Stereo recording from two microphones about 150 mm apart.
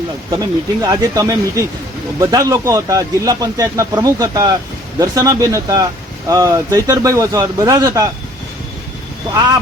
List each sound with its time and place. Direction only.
0.3 s speech: 25° right (ahead or behind)